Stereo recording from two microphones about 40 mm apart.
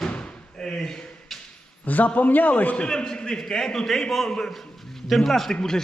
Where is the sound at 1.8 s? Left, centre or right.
Left.